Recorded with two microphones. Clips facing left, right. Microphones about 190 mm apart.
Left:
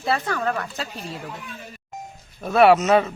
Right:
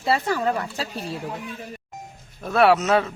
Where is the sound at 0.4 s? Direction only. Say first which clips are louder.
Right 1 dB; 25° right (ahead or behind).